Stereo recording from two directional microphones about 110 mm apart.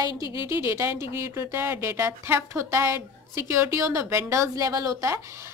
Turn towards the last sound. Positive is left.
turn(degrees=-30)  # may be behind; listen again after turning